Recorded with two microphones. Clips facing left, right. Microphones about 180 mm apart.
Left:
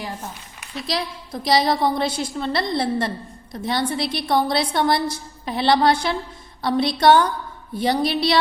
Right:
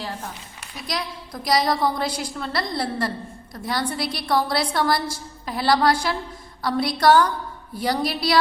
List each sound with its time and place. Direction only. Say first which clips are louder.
0.9 s a woman's voice: left 3 dB; 25° left (ahead or behind)